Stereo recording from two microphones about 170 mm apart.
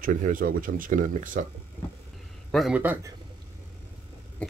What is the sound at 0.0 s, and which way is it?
Speech, 50° right (ahead or behind).